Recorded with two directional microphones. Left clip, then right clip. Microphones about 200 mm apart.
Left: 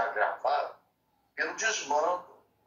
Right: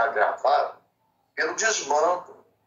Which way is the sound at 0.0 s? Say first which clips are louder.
Right 7 dB; 40° right (ahead or behind).